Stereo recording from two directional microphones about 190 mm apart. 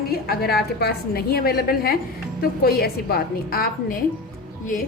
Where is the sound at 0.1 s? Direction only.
55° left (ahead or behind).